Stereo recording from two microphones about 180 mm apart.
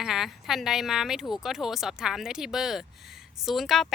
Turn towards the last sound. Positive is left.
turn(degrees=0)  # may be behind; listen again after turning